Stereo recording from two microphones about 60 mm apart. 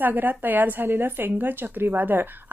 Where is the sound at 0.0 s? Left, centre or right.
Right.